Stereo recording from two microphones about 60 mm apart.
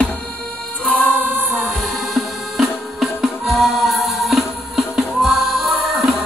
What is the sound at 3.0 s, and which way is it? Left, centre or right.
Music, centre.